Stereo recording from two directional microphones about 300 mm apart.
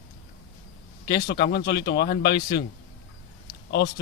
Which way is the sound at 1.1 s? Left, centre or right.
Left.